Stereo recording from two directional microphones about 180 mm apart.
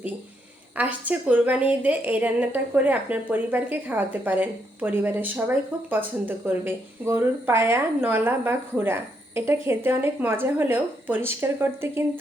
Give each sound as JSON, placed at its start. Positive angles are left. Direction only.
{"t": 0.8, "sound": "a woman's voice", "side_deg": -10}